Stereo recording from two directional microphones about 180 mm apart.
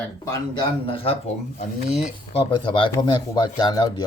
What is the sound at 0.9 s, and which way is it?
Speech, 30° left (ahead or behind).